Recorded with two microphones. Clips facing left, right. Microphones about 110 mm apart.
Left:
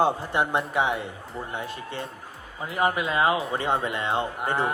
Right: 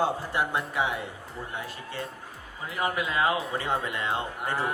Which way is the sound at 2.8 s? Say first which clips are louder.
Left 4 dB; 30° left (ahead or behind).